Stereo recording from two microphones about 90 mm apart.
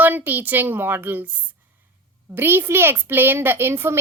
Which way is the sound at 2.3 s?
25° right (ahead or behind).